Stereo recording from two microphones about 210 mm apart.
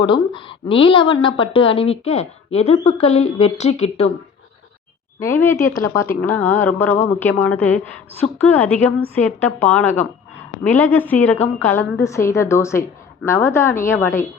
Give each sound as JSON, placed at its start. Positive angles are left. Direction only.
{"t": 0.0, "sound": "a woman's voice", "side_deg": 25}
{"t": 5.2, "sound": "a woman's voice", "side_deg": 10}